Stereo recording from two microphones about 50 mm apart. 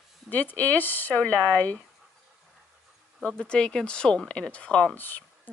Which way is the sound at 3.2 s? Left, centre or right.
Centre.